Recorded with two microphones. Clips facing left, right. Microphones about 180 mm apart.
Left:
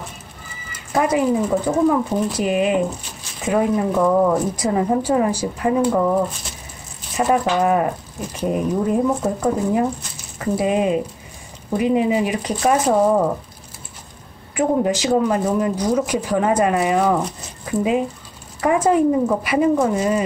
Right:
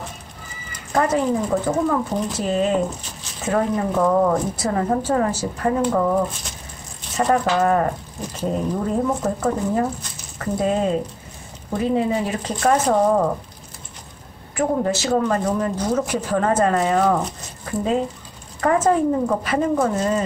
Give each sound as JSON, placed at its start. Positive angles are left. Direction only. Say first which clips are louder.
{"t": 0.9, "sound": "speech", "louder": "left 2 dB", "side_deg": 10}
{"t": 7.2, "sound": "speech", "louder": "left 1 dB", "side_deg": 10}
{"t": 14.5, "sound": "speech", "louder": "left 2 dB", "side_deg": 15}